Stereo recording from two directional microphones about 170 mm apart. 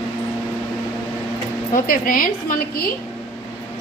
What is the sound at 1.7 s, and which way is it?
Speech, 55° left (ahead or behind).